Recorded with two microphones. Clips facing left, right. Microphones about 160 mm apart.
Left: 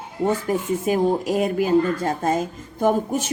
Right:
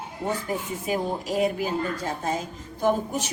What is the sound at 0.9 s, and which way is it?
Speech, 50° left (ahead or behind).